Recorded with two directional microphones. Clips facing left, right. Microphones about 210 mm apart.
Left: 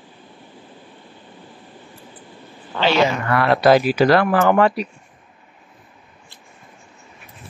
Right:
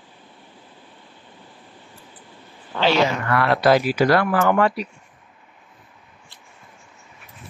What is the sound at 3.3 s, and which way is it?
Speech, 20° left (ahead or behind).